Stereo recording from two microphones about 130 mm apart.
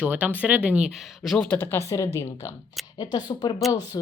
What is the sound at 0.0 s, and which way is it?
Speech, 15° right (ahead or behind).